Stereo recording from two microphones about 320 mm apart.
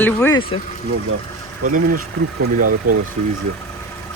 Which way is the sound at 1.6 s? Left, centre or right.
Right.